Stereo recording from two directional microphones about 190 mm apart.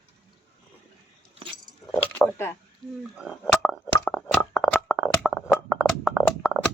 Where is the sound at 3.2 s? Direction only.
Centre (ahead or behind).